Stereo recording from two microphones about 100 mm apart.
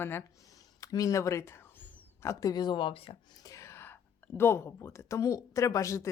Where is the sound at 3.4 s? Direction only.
30° left (ahead or behind).